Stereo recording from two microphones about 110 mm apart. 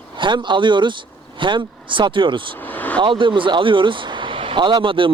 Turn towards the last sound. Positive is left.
turn(degrees=-50)  # may be behind; listen again after turning